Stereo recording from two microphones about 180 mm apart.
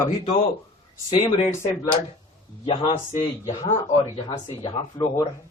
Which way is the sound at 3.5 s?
20° left (ahead or behind).